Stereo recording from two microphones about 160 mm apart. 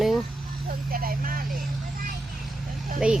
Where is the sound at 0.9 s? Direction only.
65° right (ahead or behind).